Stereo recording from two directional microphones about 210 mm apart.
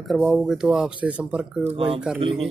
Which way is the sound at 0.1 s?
5° right (ahead or behind).